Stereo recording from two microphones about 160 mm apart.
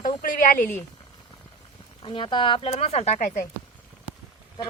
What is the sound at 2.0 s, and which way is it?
Speech, 30° left (ahead or behind).